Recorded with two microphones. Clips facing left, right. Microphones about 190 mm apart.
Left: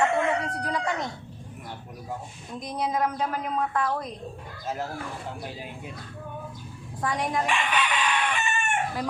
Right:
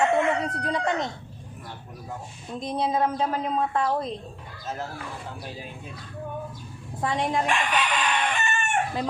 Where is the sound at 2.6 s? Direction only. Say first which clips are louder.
Right 2 dB; 30° right (ahead or behind).